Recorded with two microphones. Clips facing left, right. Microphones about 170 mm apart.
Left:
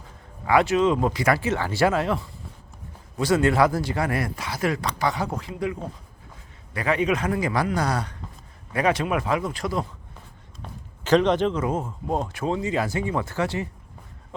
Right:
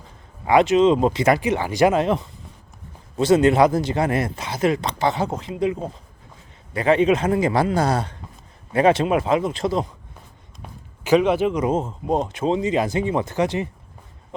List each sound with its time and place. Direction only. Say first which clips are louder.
0.4 s speech: right 4 dB; 20° right (ahead or behind)
11.0 s speech: right 2 dB; 10° right (ahead or behind)